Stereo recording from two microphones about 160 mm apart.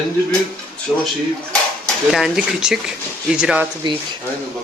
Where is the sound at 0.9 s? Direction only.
Centre (ahead or behind).